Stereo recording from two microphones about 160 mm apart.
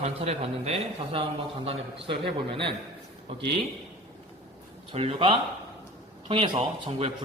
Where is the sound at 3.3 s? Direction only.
35° right (ahead or behind).